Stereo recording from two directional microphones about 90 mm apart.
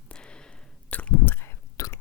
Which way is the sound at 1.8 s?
40° left (ahead or behind).